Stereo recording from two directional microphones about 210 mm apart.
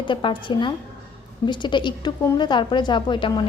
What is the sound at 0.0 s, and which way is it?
A woman's voice, 25° left (ahead or behind).